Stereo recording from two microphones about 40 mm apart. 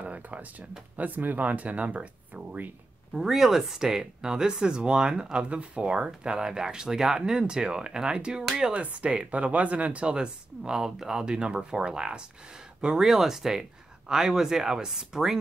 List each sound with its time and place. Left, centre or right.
0.0 s speech: right
3.2 s speech: centre
8.8 s speech: right; by 15.3 s centre